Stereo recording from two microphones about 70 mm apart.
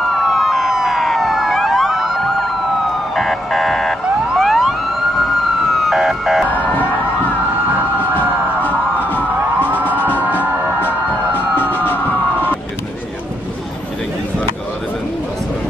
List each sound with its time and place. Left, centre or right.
0.1 s emergency vehicle: centre
3.2 s buzzer: centre
4.4 s emergency vehicle: centre
6.5 s emergency vehicle: left
7.7 s emergency vehicle: right
8.6 s a sound: left
9.8 s music: left
10.1 s music: right
10.9 s emergency vehicle: left